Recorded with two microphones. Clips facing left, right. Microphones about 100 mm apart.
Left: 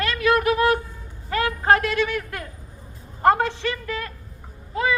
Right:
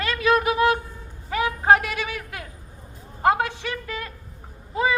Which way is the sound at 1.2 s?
15° right (ahead or behind).